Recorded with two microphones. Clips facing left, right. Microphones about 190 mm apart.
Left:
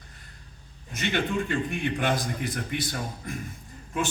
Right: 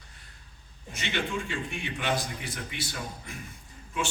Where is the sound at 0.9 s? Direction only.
50° left (ahead or behind).